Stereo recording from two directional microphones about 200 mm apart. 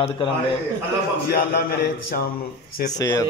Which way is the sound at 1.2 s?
50° left (ahead or behind).